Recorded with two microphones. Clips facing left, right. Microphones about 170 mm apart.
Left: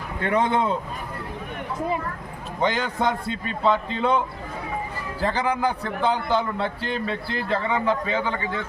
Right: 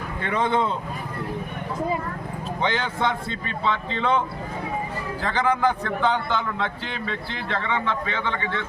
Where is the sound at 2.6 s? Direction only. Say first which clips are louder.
Left 2 dB; 40° left (ahead or behind).